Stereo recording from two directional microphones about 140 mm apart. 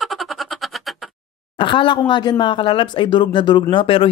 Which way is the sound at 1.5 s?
35° left (ahead or behind).